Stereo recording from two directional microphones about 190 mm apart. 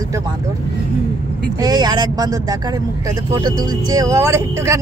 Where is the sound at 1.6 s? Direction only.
20° right (ahead or behind).